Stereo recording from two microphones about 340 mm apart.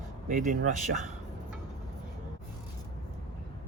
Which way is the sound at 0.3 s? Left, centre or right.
Right.